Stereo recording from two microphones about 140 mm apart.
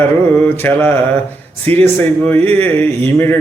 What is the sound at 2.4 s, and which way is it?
Speech, 10° left (ahead or behind).